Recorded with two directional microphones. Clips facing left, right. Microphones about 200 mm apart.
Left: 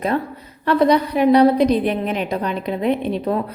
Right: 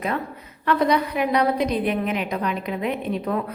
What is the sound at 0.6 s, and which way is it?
Speech, 35° left (ahead or behind).